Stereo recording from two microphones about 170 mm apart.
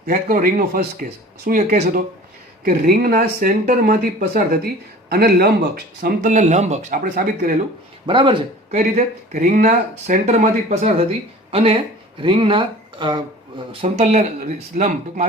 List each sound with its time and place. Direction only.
0.0 s speech: 55° right (ahead or behind)
8.0 s speech: 30° right (ahead or behind)
8.7 s speech: 45° right (ahead or behind); by 13.2 s 25° right (ahead or behind)
13.8 s speech: 40° right (ahead or behind)